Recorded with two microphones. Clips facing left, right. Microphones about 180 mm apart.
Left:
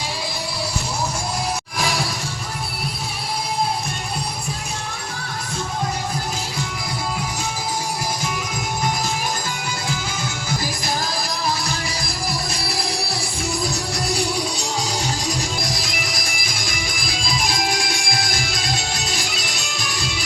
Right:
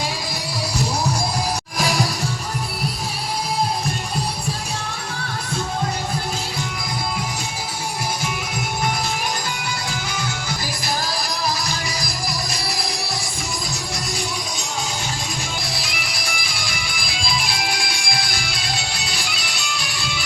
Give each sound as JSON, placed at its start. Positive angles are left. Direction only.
{"t": 15.6, "sound": "music", "side_deg": 40}